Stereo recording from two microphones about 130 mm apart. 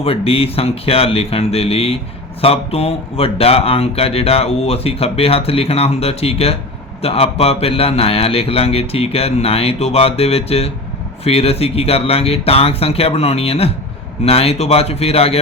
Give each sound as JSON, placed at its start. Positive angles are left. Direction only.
{"t": 0.0, "sound": "speech", "side_deg": 50}